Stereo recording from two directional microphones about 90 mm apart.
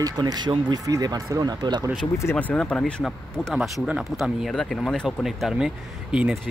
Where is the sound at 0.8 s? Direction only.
45° right (ahead or behind).